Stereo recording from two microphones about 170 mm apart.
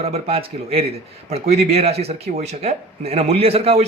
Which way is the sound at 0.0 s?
35° right (ahead or behind).